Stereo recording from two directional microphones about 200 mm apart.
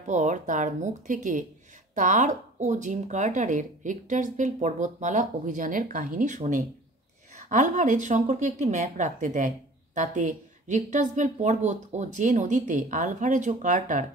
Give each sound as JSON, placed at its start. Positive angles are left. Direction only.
{"t": 0.0, "sound": "speech", "side_deg": -35}